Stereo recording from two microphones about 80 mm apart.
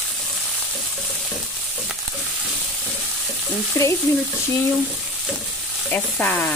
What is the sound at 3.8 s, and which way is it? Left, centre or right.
Speech, left.